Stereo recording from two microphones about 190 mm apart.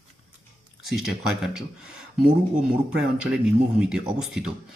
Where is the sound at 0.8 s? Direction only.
Centre (ahead or behind).